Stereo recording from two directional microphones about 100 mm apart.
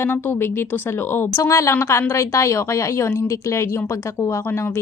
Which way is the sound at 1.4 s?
30° left (ahead or behind).